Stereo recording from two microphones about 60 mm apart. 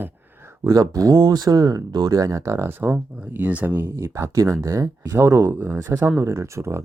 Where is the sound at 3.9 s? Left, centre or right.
Right.